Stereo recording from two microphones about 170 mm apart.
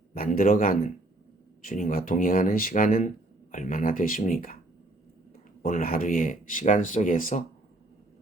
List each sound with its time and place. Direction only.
0.1 s speech: 55° left (ahead or behind)
5.6 s speech: 55° left (ahead or behind)